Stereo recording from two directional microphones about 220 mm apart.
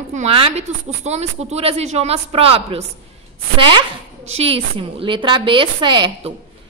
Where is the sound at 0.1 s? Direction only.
30° right (ahead or behind).